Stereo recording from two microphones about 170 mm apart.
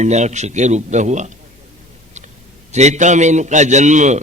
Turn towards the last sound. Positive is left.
turn(degrees=-45)  # may be behind; listen again after turning